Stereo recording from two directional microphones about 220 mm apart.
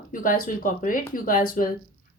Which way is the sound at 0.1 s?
40° left (ahead or behind).